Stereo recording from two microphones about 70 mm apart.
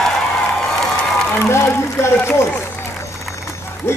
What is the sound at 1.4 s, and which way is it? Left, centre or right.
Speech, left.